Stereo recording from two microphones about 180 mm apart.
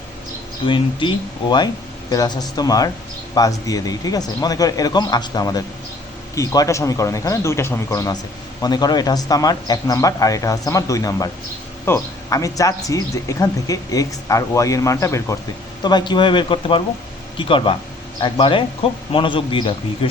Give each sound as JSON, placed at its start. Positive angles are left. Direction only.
{"t": 0.6, "sound": "speech", "side_deg": 25}